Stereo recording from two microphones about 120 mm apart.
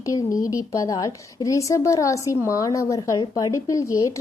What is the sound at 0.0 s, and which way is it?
A woman's voice, 30° left (ahead or behind).